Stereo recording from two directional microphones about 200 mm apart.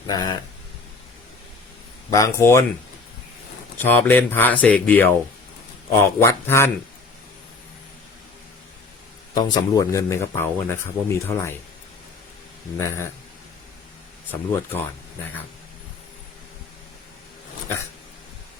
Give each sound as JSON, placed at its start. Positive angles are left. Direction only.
{"t": 0.1, "sound": "speech", "side_deg": 20}
{"t": 2.0, "sound": "speech", "side_deg": 15}
{"t": 3.8, "sound": "speech", "side_deg": 10}
{"t": 9.3, "sound": "speech", "side_deg": 20}
{"t": 14.3, "sound": "speech", "side_deg": 10}